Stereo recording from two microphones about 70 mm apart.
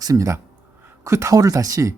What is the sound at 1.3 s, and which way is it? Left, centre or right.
Speech, right.